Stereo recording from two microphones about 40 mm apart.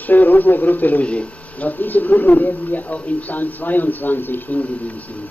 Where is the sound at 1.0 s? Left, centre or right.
Left.